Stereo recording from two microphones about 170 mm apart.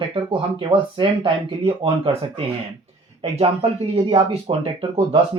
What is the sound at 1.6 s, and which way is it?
Speech, 30° right (ahead or behind).